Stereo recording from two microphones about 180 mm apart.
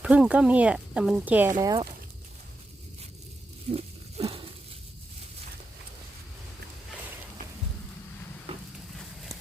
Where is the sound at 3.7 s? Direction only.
30° right (ahead or behind).